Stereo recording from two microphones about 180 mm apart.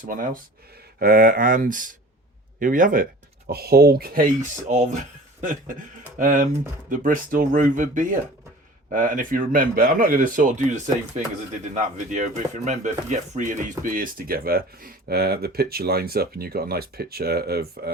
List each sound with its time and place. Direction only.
0.0 s speech: 50° right (ahead or behind)
3.5 s speech: 60° right (ahead or behind)
4.7 s speech: 45° right (ahead or behind)
6.1 s speech: 45° right (ahead or behind)